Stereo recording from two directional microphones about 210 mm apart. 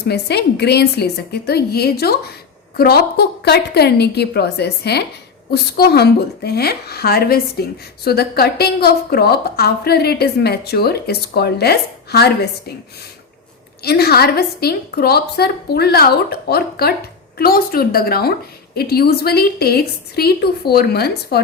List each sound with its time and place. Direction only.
0.1 s a woman's voice: 50° left (ahead or behind)
13.8 s a woman's voice: 50° left (ahead or behind)